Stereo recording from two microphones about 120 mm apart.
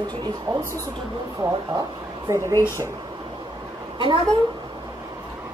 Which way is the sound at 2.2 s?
25° right (ahead or behind).